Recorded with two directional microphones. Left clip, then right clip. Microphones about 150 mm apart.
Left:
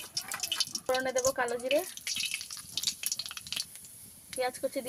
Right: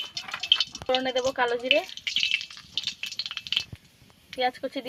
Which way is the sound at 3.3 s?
10° left (ahead or behind).